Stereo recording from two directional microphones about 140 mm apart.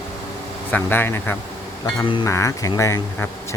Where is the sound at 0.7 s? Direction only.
15° left (ahead or behind).